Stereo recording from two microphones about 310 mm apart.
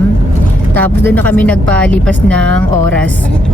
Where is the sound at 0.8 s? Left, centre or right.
Centre.